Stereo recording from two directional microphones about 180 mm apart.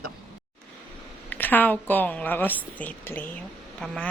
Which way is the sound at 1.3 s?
10° left (ahead or behind).